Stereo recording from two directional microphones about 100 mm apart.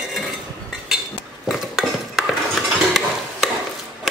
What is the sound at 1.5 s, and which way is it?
Cutlery, centre (ahead or behind).